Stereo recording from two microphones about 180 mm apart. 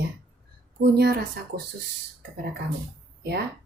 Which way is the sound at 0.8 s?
65° right (ahead or behind).